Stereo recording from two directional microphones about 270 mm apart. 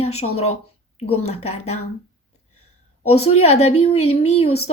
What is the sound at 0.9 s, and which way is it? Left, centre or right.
Speech, left.